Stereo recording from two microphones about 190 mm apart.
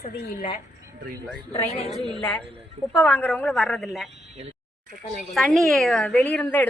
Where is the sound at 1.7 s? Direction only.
35° left (ahead or behind).